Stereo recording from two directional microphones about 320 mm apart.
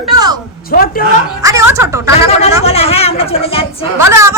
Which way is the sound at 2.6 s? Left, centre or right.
Centre.